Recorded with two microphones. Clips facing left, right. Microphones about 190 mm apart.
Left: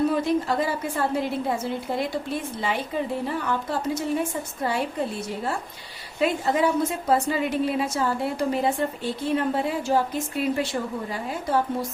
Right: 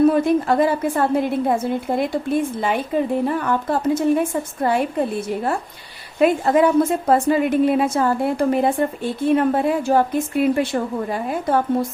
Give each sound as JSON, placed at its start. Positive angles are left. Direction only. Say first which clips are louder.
{"t": 0.1, "sound": "a woman's voice", "louder": "right 6 dB", "side_deg": -55}
{"t": 6.1, "sound": "a woman's voice", "louder": "right 7 dB", "side_deg": -55}